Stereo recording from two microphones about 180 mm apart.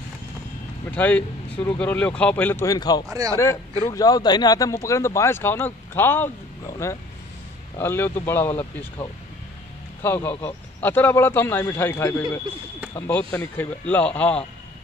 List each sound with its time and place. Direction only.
0.9 s speech: 10° left (ahead or behind)
3.1 s speech: 20° right (ahead or behind)
3.8 s speech: 20° left (ahead or behind)
10.0 s speech: 10° left (ahead or behind)